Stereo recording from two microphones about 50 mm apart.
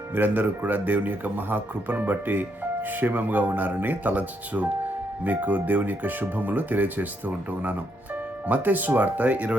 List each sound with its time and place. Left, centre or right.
0.1 s speech: right